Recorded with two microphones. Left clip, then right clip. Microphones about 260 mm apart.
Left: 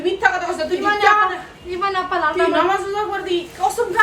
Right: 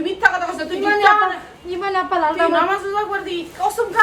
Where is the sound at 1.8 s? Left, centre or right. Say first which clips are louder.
Right 1 dB; right.